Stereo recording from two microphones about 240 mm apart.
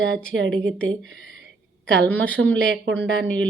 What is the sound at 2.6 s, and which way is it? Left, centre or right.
Speech, right.